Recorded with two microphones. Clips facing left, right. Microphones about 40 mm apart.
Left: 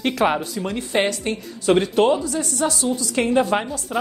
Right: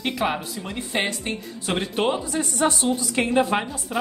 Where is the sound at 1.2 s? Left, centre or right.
Centre.